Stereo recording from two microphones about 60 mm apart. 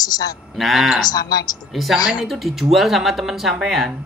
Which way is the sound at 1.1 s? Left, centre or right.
Left.